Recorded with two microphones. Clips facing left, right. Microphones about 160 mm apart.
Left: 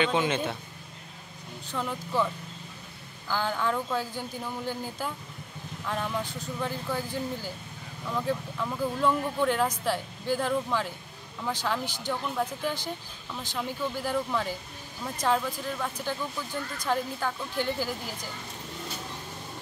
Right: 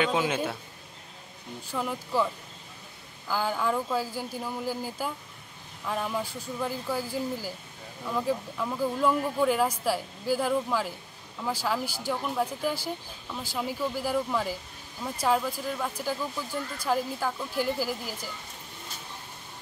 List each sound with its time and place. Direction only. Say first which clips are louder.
0.0 s speech: even; 5° right (ahead or behind)
1.7 s speech: right 1 dB; 5° right (ahead or behind)